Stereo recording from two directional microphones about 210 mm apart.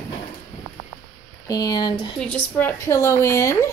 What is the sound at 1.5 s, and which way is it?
Speech, 20° left (ahead or behind).